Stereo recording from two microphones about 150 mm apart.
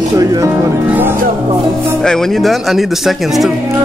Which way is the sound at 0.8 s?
15° right (ahead or behind).